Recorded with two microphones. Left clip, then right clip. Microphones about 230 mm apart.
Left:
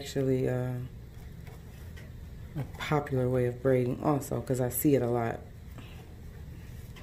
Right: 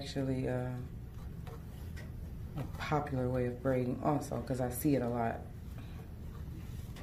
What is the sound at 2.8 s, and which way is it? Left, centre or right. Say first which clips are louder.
Speech: left 5 dB; left.